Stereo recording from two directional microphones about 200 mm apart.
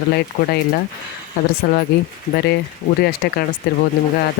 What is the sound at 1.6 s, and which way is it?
Speech, 45° left (ahead or behind).